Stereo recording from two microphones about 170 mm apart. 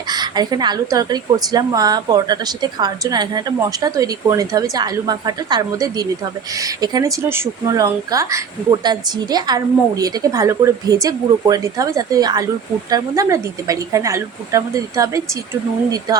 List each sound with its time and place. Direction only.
0.1 s a woman's voice: 25° right (ahead or behind)